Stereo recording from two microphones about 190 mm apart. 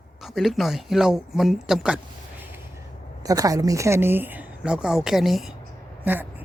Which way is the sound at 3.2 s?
20° right (ahead or behind).